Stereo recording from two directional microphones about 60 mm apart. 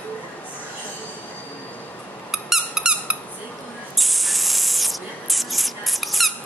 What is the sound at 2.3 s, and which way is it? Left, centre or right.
Squeak, centre.